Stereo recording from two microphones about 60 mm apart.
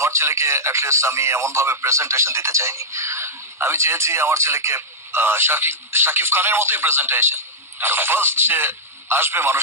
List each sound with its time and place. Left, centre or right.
0.0 s a man's voice: right